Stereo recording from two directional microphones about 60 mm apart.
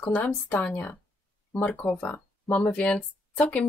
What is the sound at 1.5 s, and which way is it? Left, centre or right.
Speech, left.